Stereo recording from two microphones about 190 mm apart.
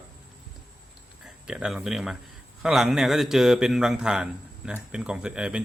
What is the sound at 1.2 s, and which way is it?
A man's voice, 5° right (ahead or behind).